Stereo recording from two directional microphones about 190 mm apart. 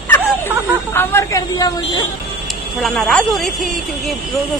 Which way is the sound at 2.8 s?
Centre (ahead or behind).